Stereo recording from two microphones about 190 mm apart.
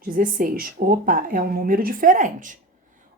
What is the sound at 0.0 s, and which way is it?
A woman's voice, 50° right (ahead or behind).